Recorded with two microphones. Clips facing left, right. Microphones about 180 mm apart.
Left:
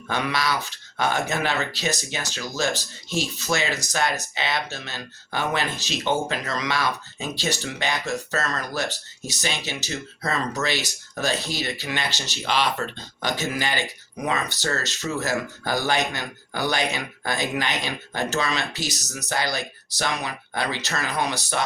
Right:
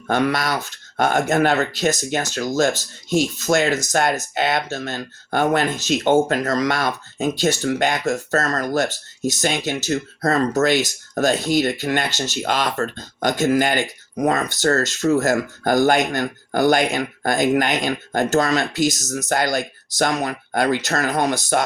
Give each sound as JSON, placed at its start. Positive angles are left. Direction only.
{"t": 0.1, "sound": "speech", "side_deg": -50}